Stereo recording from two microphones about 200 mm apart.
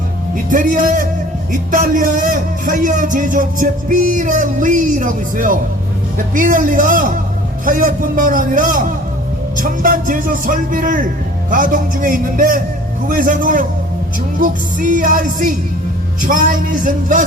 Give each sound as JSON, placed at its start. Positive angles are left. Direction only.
{"t": 0.5, "sound": "a man's voice", "side_deg": -40}